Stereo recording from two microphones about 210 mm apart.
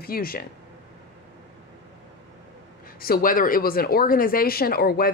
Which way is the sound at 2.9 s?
45° left (ahead or behind).